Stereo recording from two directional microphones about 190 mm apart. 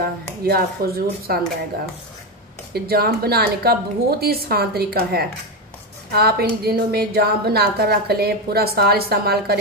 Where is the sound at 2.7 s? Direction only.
55° right (ahead or behind).